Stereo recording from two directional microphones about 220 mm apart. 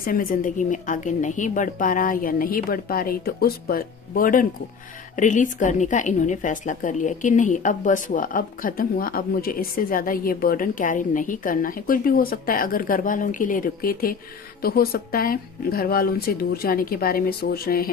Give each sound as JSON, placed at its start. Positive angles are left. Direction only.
{"t": 0.0, "sound": "a woman's voice", "side_deg": 40}